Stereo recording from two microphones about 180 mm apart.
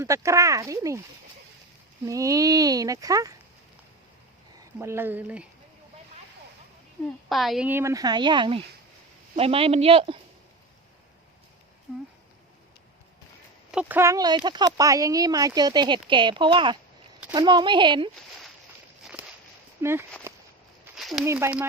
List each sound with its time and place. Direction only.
0.0 s a woman's voice: 15° right (ahead or behind)
2.0 s speech: 20° right (ahead or behind)
4.8 s a woman's voice: 15° right (ahead or behind)
7.3 s a woman's voice: centre (ahead or behind); by 10.2 s 30° right (ahead or behind)
11.9 s speech: 5° right (ahead or behind)
13.7 s speech: 10° right (ahead or behind); by 18.1 s 25° right (ahead or behind)
19.8 s a woman's voice: 15° right (ahead or behind)
20.3 s a sound: 15° right (ahead or behind)
20.9 s a sound: centre (ahead or behind)
21.2 s a woman's voice: 10° right (ahead or behind)